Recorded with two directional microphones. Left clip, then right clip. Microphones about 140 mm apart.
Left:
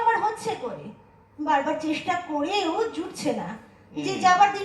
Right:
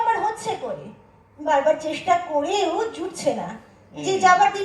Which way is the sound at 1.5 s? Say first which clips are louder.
Right 5 dB; 25° right (ahead or behind).